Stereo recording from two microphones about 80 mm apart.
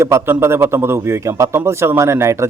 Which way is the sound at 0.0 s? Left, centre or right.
Right.